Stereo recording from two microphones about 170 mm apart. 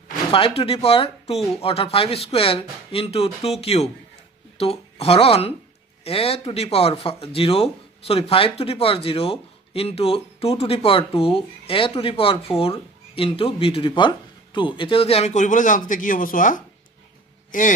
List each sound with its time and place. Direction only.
0.3 s speech: 35° left (ahead or behind); by 17.7 s 50° left (ahead or behind)